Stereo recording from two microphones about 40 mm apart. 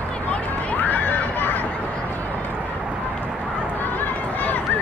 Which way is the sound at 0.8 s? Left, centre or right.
Left.